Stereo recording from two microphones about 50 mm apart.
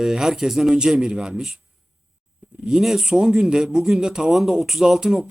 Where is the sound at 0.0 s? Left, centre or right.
Centre.